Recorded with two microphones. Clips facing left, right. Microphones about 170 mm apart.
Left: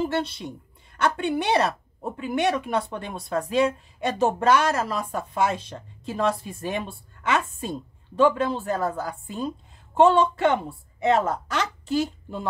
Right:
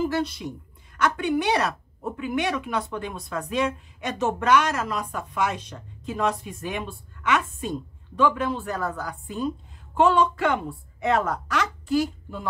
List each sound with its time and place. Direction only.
0.0 s a woman's voice: 30° left (ahead or behind)